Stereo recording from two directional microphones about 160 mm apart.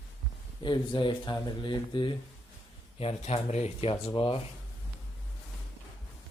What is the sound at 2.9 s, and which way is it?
Speech, 40° left (ahead or behind).